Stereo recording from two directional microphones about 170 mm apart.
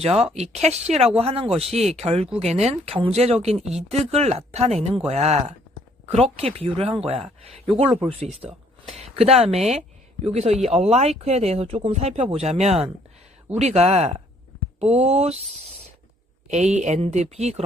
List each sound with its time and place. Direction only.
0.0 s speech: 35° right (ahead or behind)
9.0 s speech: 35° right (ahead or behind)
16.5 s speech: 40° right (ahead or behind)